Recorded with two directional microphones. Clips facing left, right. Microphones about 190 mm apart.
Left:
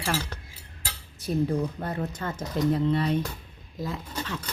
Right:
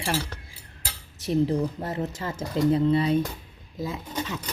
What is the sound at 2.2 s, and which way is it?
Speech, 10° right (ahead or behind).